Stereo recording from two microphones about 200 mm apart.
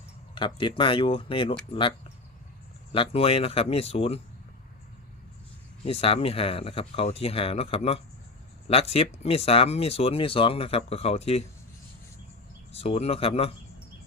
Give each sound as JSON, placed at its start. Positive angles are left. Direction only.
{"t": 0.3, "sound": "speech", "side_deg": 25}
{"t": 2.9, "sound": "speech", "side_deg": 25}
{"t": 5.8, "sound": "speech", "side_deg": 30}
{"t": 12.7, "sound": "speech", "side_deg": 30}